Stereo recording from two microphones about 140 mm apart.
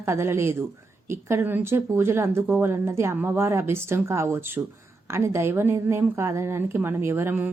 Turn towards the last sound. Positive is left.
turn(degrees=-15)  # may be behind; listen again after turning